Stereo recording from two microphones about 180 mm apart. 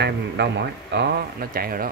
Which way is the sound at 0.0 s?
70° right (ahead or behind).